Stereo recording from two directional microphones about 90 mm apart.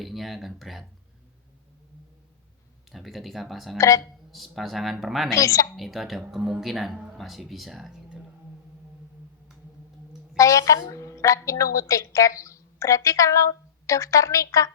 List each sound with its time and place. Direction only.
0.0 s speech: centre (ahead or behind)
2.9 s speech: centre (ahead or behind)
3.8 s a woman's voice: 35° left (ahead or behind)
4.0 s speech: centre (ahead or behind)
5.3 s a woman's voice: 35° left (ahead or behind)
5.7 s speech: centre (ahead or behind)
10.3 s a woman's voice: 35° left (ahead or behind)